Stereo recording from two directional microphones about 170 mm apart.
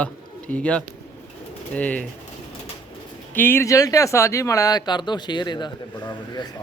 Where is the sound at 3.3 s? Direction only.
15° left (ahead or behind).